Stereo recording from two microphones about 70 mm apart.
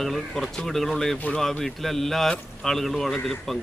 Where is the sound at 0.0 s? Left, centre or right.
Centre.